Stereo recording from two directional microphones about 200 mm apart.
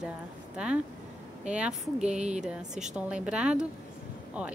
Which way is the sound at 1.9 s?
35° right (ahead or behind).